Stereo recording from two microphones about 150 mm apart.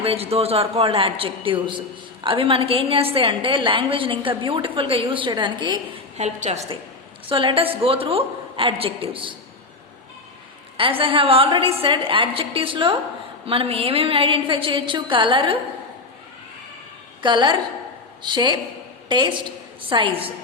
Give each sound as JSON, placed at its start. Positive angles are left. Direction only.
{"t": 0.0, "sound": "a woman's voice", "side_deg": -40}
{"t": 6.1, "sound": "a woman's voice", "side_deg": -50}
{"t": 7.3, "sound": "a woman's voice", "side_deg": -35}
{"t": 10.8, "sound": "a woman's voice", "side_deg": -35}
{"t": 17.2, "sound": "a woman's voice", "side_deg": -30}